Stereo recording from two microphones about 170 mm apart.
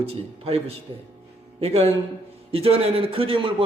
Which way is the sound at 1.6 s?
35° right (ahead or behind).